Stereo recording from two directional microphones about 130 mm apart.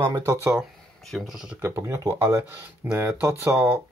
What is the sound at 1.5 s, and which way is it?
Speech, 20° right (ahead or behind).